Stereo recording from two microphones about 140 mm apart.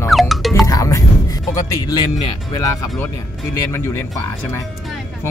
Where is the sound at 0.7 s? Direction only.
25° left (ahead or behind).